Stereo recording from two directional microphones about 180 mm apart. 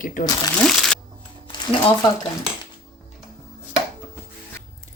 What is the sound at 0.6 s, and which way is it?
Speech, centre (ahead or behind).